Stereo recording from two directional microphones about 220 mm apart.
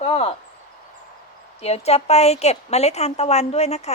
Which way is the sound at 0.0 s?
25° left (ahead or behind).